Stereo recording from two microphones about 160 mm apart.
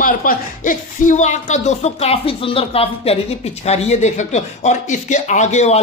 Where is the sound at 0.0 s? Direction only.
60° left (ahead or behind).